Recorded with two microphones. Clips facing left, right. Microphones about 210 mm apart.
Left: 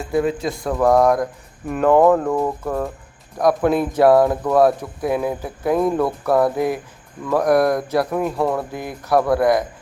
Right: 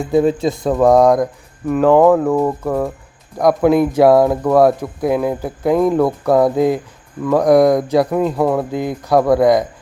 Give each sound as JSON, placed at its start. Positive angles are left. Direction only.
{"t": 0.2, "sound": "speech", "side_deg": -25}
{"t": 1.6, "sound": "speech", "side_deg": 0}
{"t": 8.4, "sound": "speech", "side_deg": -5}
{"t": 8.7, "sound": "speech", "side_deg": -15}